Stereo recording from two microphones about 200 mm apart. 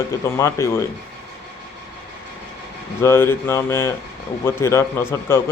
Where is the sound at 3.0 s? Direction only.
10° left (ahead or behind).